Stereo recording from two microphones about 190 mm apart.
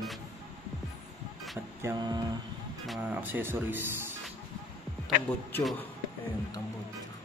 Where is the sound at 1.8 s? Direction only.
20° right (ahead or behind).